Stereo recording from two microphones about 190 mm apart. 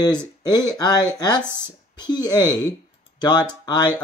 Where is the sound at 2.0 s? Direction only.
20° left (ahead or behind).